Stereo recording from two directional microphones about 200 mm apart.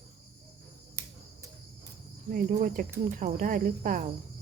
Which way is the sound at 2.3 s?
45° right (ahead or behind).